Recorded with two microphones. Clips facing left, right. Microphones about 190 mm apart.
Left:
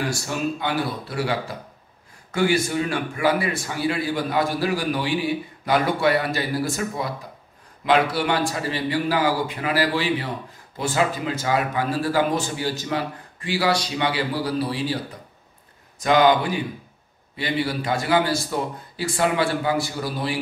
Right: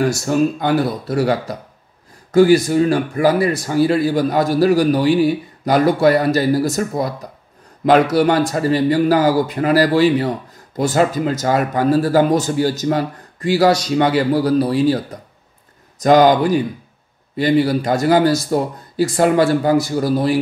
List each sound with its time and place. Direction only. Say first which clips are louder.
0.1 s speech: right 9 dB; 45° right (ahead or behind)
16.0 s speech: right 6 dB; 40° right (ahead or behind)